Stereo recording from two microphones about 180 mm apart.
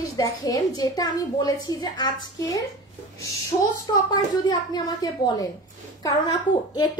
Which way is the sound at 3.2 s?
20° left (ahead or behind).